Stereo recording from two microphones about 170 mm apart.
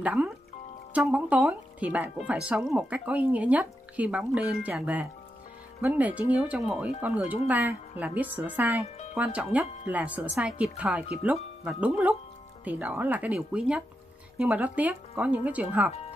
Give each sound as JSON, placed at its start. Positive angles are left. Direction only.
{"t": 0.0, "sound": "speech", "side_deg": -5}